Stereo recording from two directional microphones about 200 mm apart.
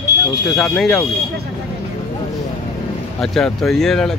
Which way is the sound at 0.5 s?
Centre (ahead or behind).